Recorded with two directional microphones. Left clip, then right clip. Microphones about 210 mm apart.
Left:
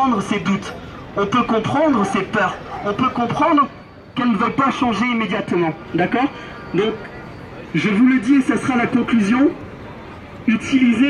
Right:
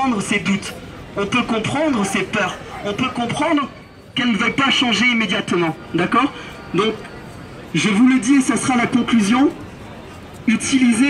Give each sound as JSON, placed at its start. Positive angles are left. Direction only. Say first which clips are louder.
{"t": 0.0, "sound": "a man's voice", "louder": "left 1 dB", "side_deg": 10}
{"t": 7.8, "sound": "speech", "louder": "right 1 dB", "side_deg": -25}